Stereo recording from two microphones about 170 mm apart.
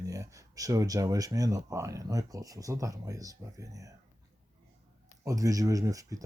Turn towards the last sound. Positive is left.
turn(degrees=-20)  # may be behind; listen again after turning